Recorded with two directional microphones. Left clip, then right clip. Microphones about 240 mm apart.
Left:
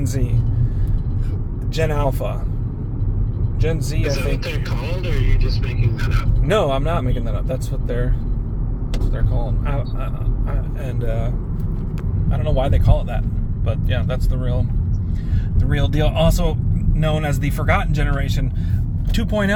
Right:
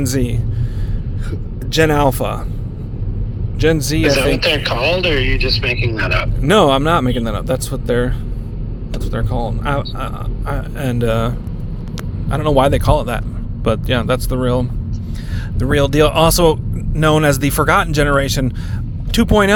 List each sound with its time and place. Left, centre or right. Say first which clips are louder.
0.0 s speech: right 8 dB; right
1.7 s speech: right 9 dB; right
3.6 s speech: right 10 dB; right
4.4 s speech: right 13 dB; centre
6.4 s speech: right 6 dB; right
9.1 s speech: right 10 dB; right
12.3 s speech: right 9 dB; right